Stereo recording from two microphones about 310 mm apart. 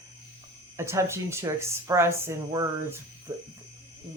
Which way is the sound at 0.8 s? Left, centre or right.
Centre.